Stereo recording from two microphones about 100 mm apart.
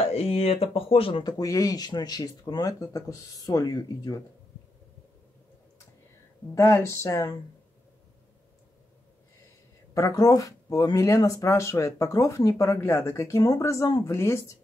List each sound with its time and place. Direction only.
0.0 s speech: 85° left; by 1.2 s 70° left (ahead or behind)
1.2 s speech: 35° left (ahead or behind)
6.5 s speech: 30° left (ahead or behind)
9.9 s speech: 35° left (ahead or behind)